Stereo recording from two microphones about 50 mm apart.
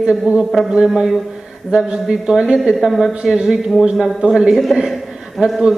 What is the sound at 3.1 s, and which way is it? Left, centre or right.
Speech, centre.